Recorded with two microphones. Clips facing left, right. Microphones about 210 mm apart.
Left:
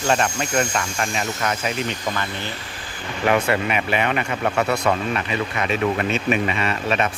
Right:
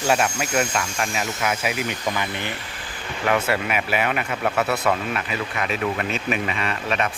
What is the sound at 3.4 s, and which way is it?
Speech, 5° right (ahead or behind).